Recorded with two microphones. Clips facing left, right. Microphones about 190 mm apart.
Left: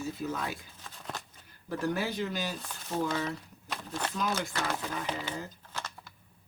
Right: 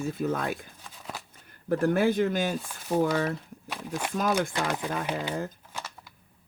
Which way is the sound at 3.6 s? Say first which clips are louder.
Right 2 dB; 10° right (ahead or behind).